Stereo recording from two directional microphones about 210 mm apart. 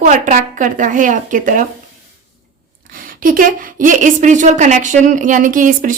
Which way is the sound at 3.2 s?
40° right (ahead or behind).